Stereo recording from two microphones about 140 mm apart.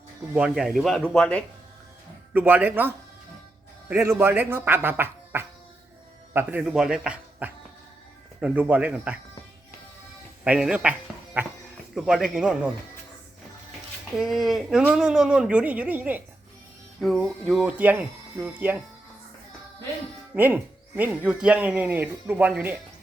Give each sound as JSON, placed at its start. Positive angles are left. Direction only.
{"t": 0.3, "sound": "speech", "side_deg": -5}
{"t": 2.3, "sound": "speech", "side_deg": -10}
{"t": 10.4, "sound": "speech", "side_deg": -10}
{"t": 11.9, "sound": "speech", "side_deg": -5}
{"t": 14.2, "sound": "speech", "side_deg": 0}
{"t": 17.0, "sound": "speech", "side_deg": 0}
{"t": 20.3, "sound": "speech", "side_deg": -15}